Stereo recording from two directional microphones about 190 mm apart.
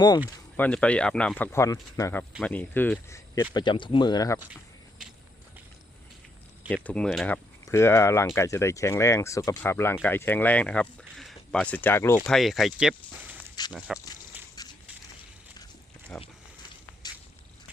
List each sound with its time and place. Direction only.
0.5 s speech: 10° left (ahead or behind)
3.5 s speech: 25° left (ahead or behind)
6.8 s speech: 5° left (ahead or behind)
7.6 s speech: 15° left (ahead or behind); by 14.0 s 5° right (ahead or behind)
14.6 s a sound: 20° left (ahead or behind)
16.1 s speech: 5° left (ahead or behind)
17.0 s a sound: 20° left (ahead or behind)